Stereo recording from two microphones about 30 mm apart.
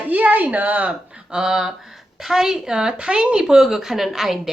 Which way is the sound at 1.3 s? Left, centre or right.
Right.